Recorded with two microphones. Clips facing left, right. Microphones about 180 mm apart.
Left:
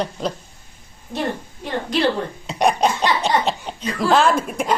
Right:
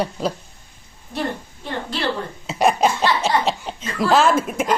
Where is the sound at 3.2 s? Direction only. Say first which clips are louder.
Even; centre (ahead or behind).